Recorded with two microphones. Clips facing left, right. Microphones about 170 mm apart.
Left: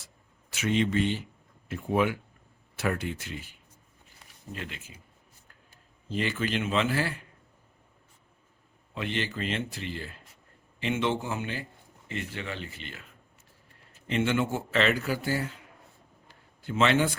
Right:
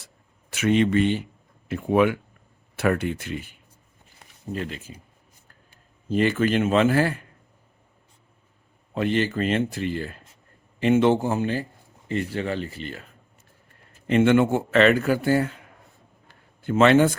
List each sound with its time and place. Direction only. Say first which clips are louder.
0.5 s a man's voice: right 6 dB; 60° right (ahead or behind)
1.6 s speech: right 6 dB; 70° right (ahead or behind)
2.7 s a man's voice: right 7 dB; 60° right (ahead or behind)
4.5 s speech: right 9 dB; 40° right (ahead or behind)
6.1 s speech: right 9 dB; 50° right (ahead or behind)
9.0 s speech: right 9 dB; 45° right (ahead or behind)
14.1 s a man's voice: right 9 dB; 55° right (ahead or behind)
16.3 s a sound: right 9 dB; 50° right (ahead or behind)